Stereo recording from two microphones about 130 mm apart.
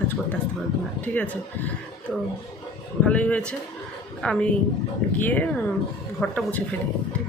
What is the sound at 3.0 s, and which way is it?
Speech, 10° left (ahead or behind).